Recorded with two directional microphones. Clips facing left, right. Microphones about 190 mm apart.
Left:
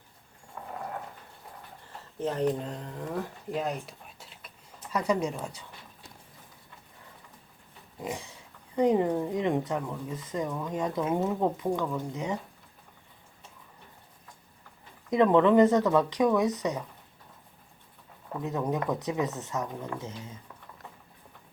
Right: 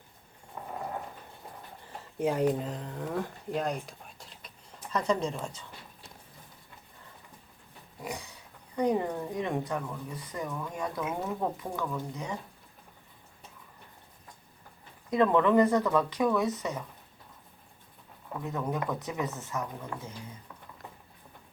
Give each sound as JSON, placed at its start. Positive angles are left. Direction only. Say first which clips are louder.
{"t": 2.1, "sound": "speech", "louder": "right 1 dB", "side_deg": -10}
{"t": 8.0, "sound": "a woman's voice", "louder": "left 3 dB", "side_deg": 25}
{"t": 15.1, "sound": "speech", "louder": "left 3 dB", "side_deg": 20}
{"t": 18.4, "sound": "a woman's voice", "louder": "left 3 dB", "side_deg": 20}